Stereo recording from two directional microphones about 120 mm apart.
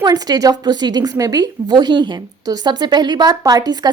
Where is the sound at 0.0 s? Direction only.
35° right (ahead or behind).